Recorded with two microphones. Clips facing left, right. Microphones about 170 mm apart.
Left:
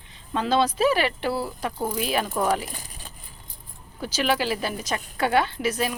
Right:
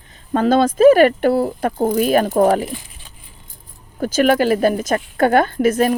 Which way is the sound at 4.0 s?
50° right (ahead or behind).